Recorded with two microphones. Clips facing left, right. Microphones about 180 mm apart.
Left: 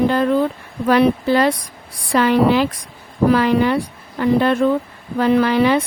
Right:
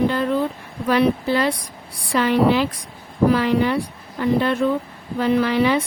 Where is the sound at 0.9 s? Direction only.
50° left (ahead or behind).